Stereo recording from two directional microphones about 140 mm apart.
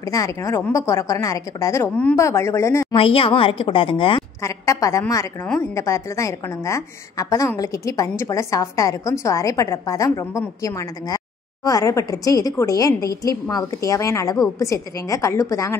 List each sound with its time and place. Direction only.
0.0 s a woman's voice: 25° left (ahead or behind)
2.9 s a woman's voice: 40° left (ahead or behind)
4.4 s a woman's voice: 20° left (ahead or behind)